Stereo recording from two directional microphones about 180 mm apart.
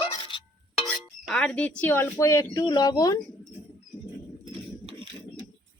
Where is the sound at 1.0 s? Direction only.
5° left (ahead or behind); by 3.2 s 20° left (ahead or behind).